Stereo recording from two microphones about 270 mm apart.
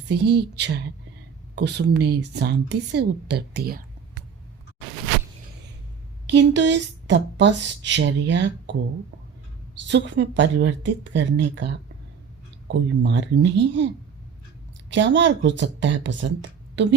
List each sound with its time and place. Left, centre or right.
0.1 s speech: right
6.2 s speech: right
9.8 s speech: right